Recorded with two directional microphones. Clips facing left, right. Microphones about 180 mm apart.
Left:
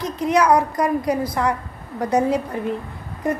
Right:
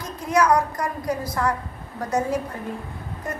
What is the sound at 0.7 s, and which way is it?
A woman's voice, 15° left (ahead or behind).